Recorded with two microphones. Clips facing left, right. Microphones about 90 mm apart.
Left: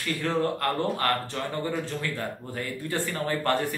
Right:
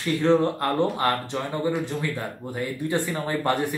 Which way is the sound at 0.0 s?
25° right (ahead or behind).